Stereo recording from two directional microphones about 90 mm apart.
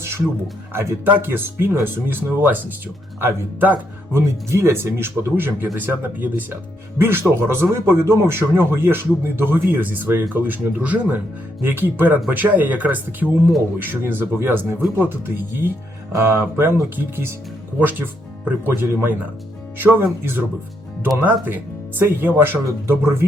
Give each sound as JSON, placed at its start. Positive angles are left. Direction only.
{"t": 0.7, "sound": "speech", "side_deg": -25}